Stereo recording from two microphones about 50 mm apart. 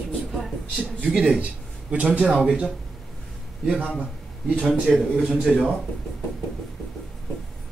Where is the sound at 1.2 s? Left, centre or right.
Right.